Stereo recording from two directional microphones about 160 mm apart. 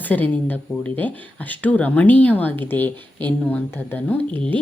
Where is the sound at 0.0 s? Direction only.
10° left (ahead or behind).